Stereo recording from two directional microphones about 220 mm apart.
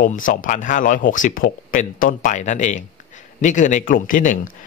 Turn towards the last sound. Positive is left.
turn(degrees=35)  # may be behind; listen again after turning